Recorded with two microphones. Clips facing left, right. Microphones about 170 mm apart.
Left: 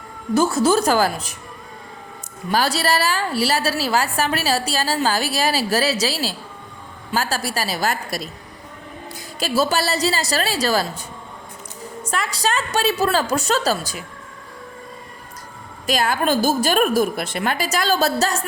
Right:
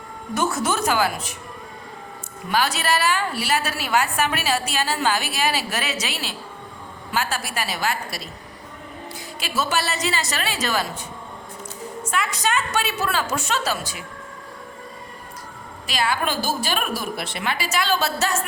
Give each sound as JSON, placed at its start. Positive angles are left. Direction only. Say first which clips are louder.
{"t": 0.3, "sound": "a woman's voice", "louder": "left 6 dB", "side_deg": 30}
{"t": 2.5, "sound": "a woman's voice", "louder": "left 2 dB", "side_deg": 35}
{"t": 12.1, "sound": "a woman's voice", "louder": "left 1 dB", "side_deg": 35}
{"t": 15.9, "sound": "a woman's voice", "louder": "left 5 dB", "side_deg": 45}